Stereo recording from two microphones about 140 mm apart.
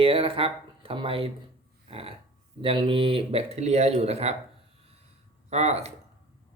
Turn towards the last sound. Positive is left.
turn(degrees=-50)  # may be behind; listen again after turning